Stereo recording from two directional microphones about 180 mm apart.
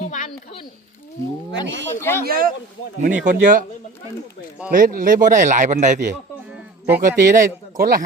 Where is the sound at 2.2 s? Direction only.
55° right (ahead or behind).